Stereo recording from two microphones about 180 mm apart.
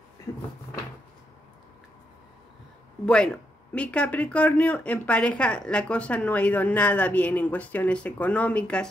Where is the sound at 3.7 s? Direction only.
5° left (ahead or behind).